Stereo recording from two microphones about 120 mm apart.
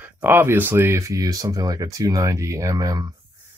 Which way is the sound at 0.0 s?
15° right (ahead or behind).